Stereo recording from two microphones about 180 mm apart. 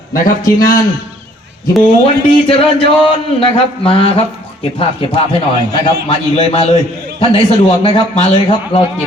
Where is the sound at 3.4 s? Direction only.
30° left (ahead or behind).